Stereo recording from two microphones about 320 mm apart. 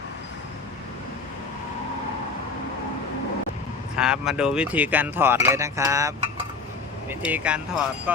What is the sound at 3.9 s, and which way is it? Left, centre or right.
Speech, centre.